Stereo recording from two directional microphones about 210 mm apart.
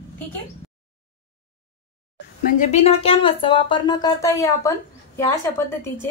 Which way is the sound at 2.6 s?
30° left (ahead or behind).